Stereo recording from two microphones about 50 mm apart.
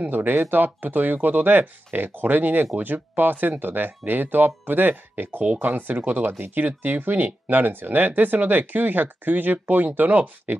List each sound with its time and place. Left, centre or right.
0.0 s speech: right